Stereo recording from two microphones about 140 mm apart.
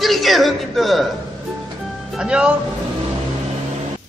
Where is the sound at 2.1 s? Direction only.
5° right (ahead or behind).